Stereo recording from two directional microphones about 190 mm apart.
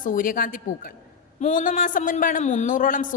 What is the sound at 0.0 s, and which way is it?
A man's voice, 45° left (ahead or behind).